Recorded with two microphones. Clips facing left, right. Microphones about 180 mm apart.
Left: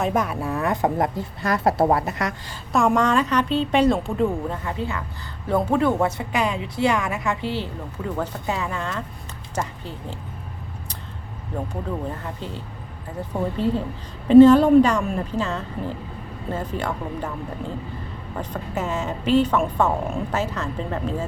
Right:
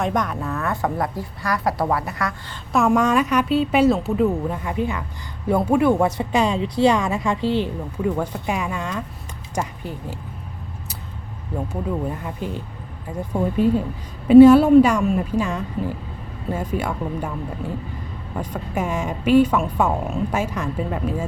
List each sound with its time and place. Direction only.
0.0 s speech: 5° left (ahead or behind)
2.7 s a woman's voice: 5° right (ahead or behind)
12.2 s a woman's voice: 15° right (ahead or behind)
18.3 s a woman's voice: 10° right (ahead or behind)